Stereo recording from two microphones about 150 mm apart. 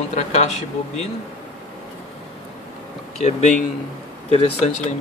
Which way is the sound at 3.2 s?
50° left (ahead or behind).